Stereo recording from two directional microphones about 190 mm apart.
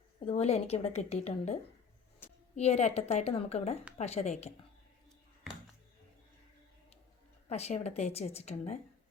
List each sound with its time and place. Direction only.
0.3 s a woman's voice: 35° left (ahead or behind)
2.6 s a woman's voice: 35° left (ahead or behind)
7.4 s a woman's voice: 35° left (ahead or behind)